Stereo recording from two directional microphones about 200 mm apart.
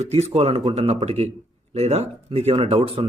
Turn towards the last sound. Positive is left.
turn(degrees=-30)  # may be behind; listen again after turning